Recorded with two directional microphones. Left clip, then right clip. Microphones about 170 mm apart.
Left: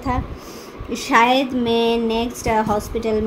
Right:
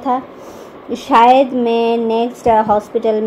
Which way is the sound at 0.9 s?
20° right (ahead or behind).